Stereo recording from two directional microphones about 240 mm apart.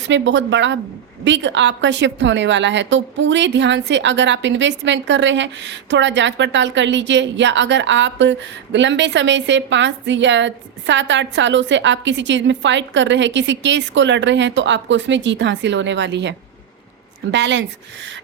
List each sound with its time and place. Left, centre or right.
0.1 s a woman's voice: right
17.3 s a woman's voice: right